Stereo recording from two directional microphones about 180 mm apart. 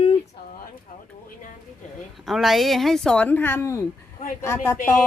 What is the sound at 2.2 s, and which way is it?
Speech, centre (ahead or behind).